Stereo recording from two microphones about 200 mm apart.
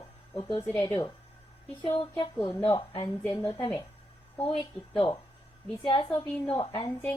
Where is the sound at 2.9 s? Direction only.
25° left (ahead or behind).